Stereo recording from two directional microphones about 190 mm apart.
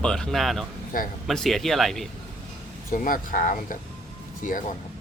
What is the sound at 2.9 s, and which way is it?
Speech, 45° left (ahead or behind).